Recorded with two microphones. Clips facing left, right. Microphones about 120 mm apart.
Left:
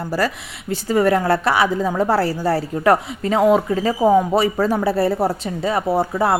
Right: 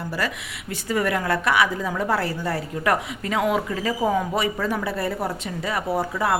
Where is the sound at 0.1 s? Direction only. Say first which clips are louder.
Left 8 dB; 40° left (ahead or behind).